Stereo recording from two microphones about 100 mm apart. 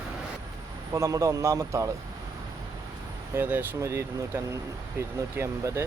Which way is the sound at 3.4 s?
20° right (ahead or behind).